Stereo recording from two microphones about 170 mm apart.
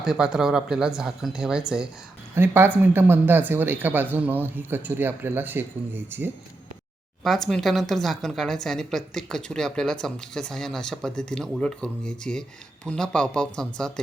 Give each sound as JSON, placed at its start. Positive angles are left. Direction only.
{"t": 0.0, "sound": "a woman's voice", "side_deg": -5}
{"t": 7.3, "sound": "a woman's voice", "side_deg": 0}